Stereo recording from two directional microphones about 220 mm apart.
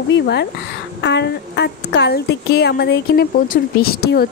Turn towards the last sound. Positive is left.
turn(degrees=45)  # may be behind; listen again after turning